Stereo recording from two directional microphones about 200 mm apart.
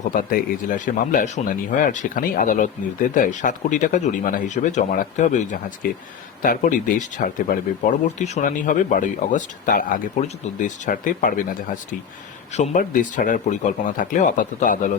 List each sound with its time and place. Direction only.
0.0 s speech: 40° left (ahead or behind)